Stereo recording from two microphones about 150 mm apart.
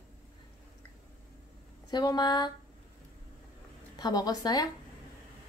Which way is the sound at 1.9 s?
30° left (ahead or behind).